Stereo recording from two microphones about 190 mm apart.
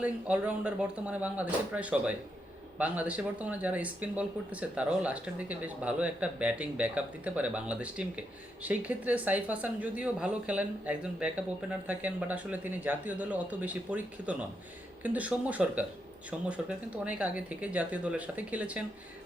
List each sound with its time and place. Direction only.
0.0 s speech: 5° right (ahead or behind)